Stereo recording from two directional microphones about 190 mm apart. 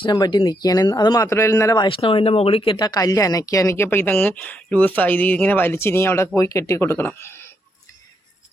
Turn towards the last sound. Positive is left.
turn(degrees=10)  # may be behind; listen again after turning